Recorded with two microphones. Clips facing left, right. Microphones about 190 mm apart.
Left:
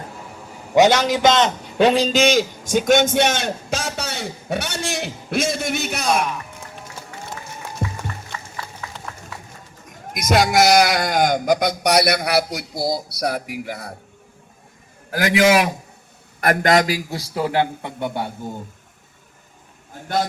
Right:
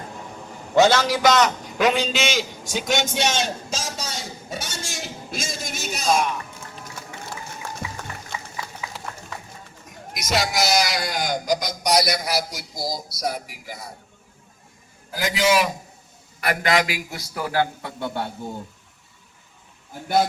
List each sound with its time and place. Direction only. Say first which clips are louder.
0.7 s a man's voice: left 2 dB; 15° left (ahead or behind); by 6.2 s 60° left (ahead or behind)
8.3 s a sound: even; 10° right (ahead or behind)
9.3 s run: right 1 dB; 5° left (ahead or behind)
10.2 s a man's voice: left 7 dB; 50° left (ahead or behind)
15.1 s a man's voice: left 5 dB; 65° left (ahead or behind)
16.4 s a man's voice: left 5 dB; 45° left (ahead or behind); by 18.3 s 15° left (ahead or behind)